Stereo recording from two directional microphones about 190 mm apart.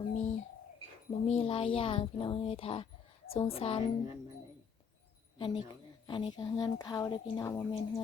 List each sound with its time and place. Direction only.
0.1 s bird: 35° left (ahead or behind)
1.1 s a woman's voice: 35° left (ahead or behind)
5.4 s a woman's voice: 25° left (ahead or behind)